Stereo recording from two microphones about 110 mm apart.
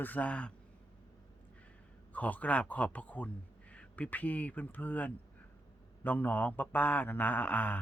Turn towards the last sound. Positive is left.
turn(degrees=15)  # may be behind; listen again after turning